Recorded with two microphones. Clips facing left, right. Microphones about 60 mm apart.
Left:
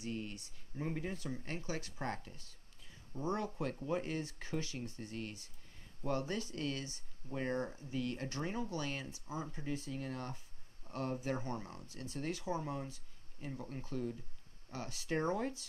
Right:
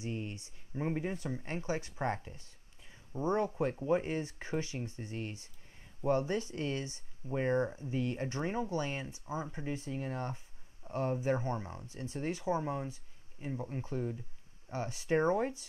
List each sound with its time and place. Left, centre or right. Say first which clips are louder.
0.0 s speech: right 3 dB; right